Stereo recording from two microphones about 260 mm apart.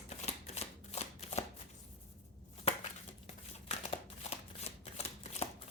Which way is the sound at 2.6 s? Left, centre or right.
Left.